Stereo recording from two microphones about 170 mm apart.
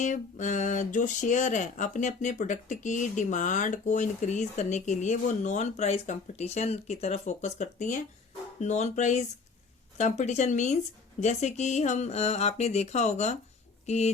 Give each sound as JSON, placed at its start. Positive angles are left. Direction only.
{"t": 0.0, "sound": "speech", "side_deg": 45}